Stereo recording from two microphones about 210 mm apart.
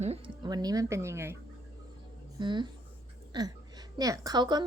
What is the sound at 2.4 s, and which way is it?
Speech, 20° right (ahead or behind).